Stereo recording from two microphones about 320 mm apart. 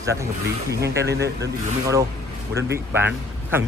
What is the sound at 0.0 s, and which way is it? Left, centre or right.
Speech, centre.